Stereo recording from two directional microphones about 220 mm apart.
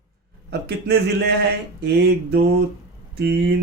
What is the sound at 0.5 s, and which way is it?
Speech, 45° right (ahead or behind).